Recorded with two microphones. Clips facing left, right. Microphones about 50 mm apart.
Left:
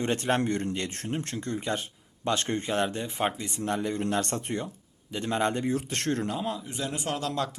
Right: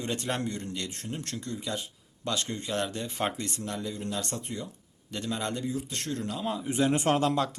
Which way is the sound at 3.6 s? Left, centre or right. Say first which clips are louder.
Left 9 dB; left.